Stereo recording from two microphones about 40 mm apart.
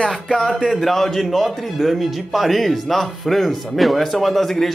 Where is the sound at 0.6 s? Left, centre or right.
Centre.